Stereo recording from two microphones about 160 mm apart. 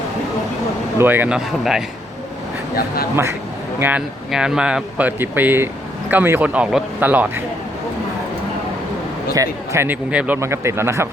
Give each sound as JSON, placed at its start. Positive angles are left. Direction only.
{"t": 0.9, "sound": "speech", "side_deg": -10}
{"t": 2.7, "sound": "speech", "side_deg": 70}
{"t": 3.8, "sound": "speech", "side_deg": -10}
{"t": 9.3, "sound": "speech", "side_deg": -20}